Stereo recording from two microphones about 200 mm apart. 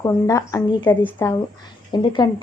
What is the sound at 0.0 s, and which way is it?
A woman's voice, 15° left (ahead or behind).